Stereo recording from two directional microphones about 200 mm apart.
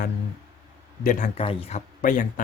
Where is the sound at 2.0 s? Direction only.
40° left (ahead or behind).